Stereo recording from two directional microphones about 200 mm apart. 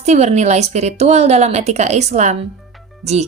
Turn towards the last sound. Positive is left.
turn(degrees=-35)  # may be behind; listen again after turning